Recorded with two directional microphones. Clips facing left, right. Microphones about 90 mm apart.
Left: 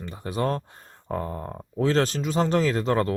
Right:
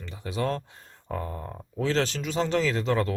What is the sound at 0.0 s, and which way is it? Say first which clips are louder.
Speech: left 3 dB; 45° left (ahead or behind).